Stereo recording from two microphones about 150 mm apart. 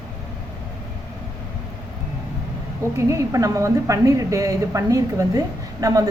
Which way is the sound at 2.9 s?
20° right (ahead or behind).